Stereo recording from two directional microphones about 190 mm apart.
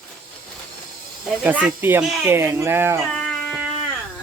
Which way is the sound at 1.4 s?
10° right (ahead or behind).